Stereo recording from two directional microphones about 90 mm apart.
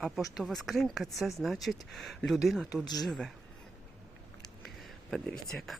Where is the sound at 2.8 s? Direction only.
45° left (ahead or behind).